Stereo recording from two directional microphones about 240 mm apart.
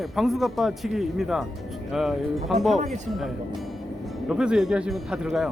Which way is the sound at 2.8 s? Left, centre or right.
Right.